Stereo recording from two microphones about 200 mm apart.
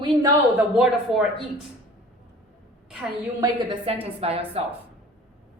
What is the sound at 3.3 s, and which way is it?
Speech, 25° right (ahead or behind).